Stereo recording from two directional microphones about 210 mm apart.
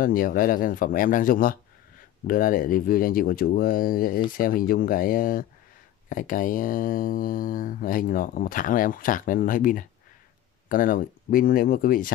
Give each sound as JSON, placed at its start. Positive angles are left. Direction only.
{"t": 0.0, "sound": "speech", "side_deg": 45}